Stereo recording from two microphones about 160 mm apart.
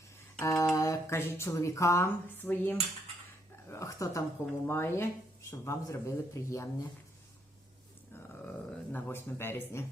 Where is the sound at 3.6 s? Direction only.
20° left (ahead or behind).